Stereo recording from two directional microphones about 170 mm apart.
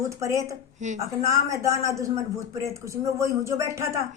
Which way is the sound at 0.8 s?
45° right (ahead or behind).